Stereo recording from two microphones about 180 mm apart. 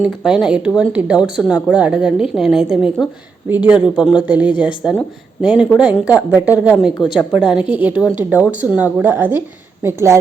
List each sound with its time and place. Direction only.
0.0 s a woman's voice: 5° right (ahead or behind)
7.6 s a woman's voice: 25° left (ahead or behind)
8.0 s a woman's voice: 10° right (ahead or behind)